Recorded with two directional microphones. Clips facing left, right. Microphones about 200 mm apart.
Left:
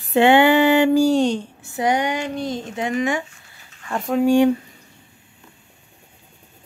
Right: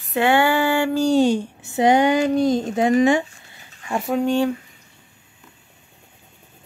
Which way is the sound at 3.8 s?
10° right (ahead or behind).